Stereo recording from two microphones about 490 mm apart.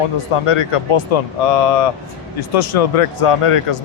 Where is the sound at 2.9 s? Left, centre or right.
Left.